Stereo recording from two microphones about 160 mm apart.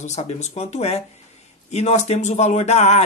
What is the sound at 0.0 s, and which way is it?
Speech, 45° left (ahead or behind).